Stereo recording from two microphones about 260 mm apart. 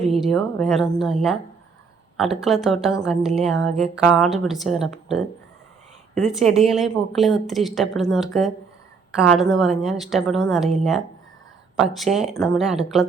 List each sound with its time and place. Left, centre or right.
0.1 s a woman's voice: centre
6.2 s a woman's voice: centre